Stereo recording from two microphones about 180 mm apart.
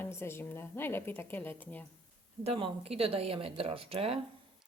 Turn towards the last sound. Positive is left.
turn(degrees=-35)  # may be behind; listen again after turning